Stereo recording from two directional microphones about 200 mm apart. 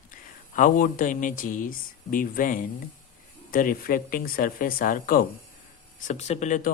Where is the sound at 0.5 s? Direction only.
40° left (ahead or behind).